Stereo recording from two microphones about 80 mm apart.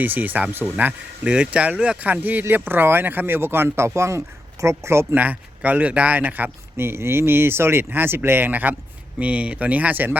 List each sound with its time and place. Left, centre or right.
0.0 s speech: right
5.2 s speech: centre